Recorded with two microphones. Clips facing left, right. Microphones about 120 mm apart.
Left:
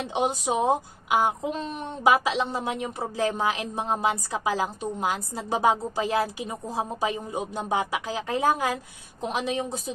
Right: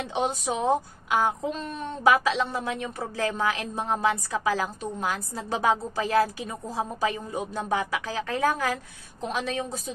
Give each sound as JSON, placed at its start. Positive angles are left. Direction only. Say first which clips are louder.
{"t": 0.1, "sound": "a woman's voice", "louder": "left 3 dB", "side_deg": 15}